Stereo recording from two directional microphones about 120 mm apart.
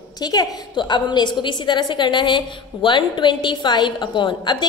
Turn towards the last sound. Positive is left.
turn(degrees=40)  # may be behind; listen again after turning